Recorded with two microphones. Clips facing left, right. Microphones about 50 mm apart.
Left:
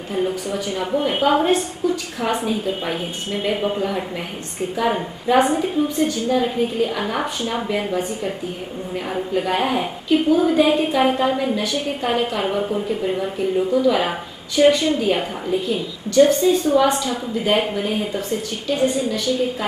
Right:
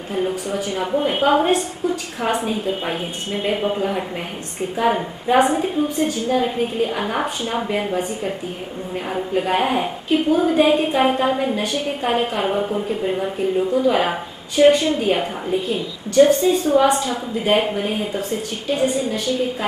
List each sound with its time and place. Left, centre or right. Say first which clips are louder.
0.1 s a woman's voice: even; centre
9.3 s a man's voice: right 1 dB; centre
9.6 s a woman's voice: right 1 dB; centre
10.6 s a woman's voice: right 1 dB; centre
13.7 s a woman's voice: left 2 dB; right
14.6 s a woman's voice: right 1 dB; centre
15.7 s a woman's voice: even; centre